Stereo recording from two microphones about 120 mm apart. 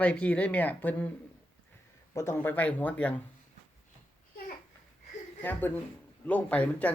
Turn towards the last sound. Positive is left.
turn(degrees=10)  # may be behind; listen again after turning